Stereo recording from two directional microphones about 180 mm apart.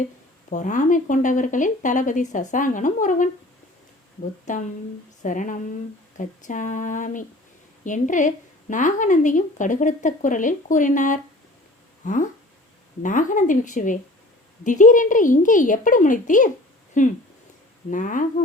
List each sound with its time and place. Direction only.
0.5 s speech: 45° left (ahead or behind)
4.5 s speech: 45° left (ahead or behind)